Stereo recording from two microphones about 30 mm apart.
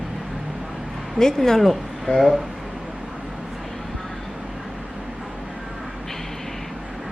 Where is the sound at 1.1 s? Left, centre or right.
Centre.